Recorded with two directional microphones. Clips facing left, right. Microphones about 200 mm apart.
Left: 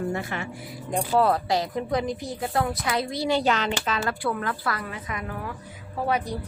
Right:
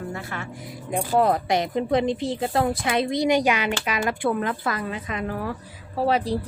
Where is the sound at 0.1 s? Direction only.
20° left (ahead or behind).